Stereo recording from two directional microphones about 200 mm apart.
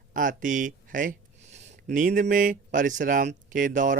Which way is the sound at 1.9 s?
40° right (ahead or behind).